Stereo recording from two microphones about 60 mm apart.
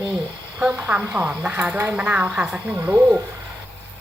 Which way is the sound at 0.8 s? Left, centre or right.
Right.